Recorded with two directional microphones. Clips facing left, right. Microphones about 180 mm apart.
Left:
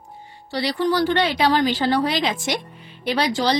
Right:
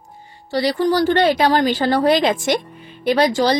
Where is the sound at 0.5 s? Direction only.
45° right (ahead or behind).